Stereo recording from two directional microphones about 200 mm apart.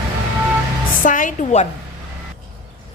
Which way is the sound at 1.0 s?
40° left (ahead or behind).